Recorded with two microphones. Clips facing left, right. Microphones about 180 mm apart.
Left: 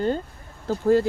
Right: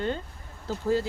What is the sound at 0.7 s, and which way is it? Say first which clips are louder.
Speech: left 7 dB; 55° left (ahead or behind).